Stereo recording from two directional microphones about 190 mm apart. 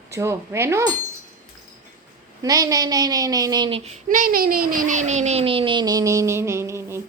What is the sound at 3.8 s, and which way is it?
Speech, 40° right (ahead or behind).